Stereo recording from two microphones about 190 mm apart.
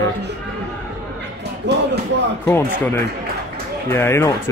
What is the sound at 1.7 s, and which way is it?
Speech, 65° right (ahead or behind).